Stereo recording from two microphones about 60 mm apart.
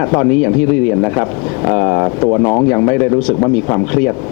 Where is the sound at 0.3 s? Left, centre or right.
Centre.